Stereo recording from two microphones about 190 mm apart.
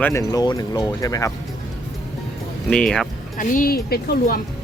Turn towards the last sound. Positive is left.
turn(degrees=55)  # may be behind; listen again after turning